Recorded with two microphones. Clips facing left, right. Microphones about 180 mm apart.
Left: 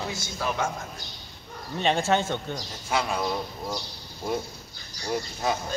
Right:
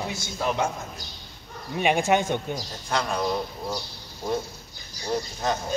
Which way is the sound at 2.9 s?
5° left (ahead or behind).